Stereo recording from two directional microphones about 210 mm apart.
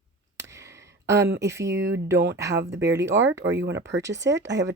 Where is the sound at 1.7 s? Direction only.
55° right (ahead or behind).